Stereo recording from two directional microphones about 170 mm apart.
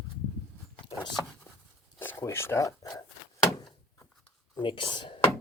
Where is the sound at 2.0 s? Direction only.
15° left (ahead or behind).